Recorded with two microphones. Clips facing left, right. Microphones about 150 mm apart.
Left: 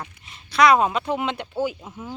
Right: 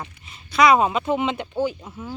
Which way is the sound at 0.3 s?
Centre (ahead or behind).